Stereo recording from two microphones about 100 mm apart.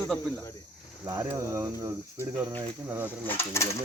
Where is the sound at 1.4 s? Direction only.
30° right (ahead or behind).